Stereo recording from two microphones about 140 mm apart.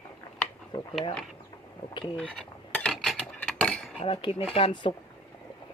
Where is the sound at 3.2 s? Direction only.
10° left (ahead or behind).